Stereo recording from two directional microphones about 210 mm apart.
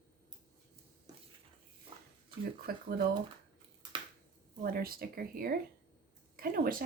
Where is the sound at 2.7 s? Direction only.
45° right (ahead or behind).